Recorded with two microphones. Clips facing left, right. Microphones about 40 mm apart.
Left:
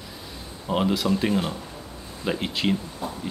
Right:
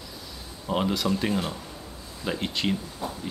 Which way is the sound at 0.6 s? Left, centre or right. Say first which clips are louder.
Left 2 dB; centre.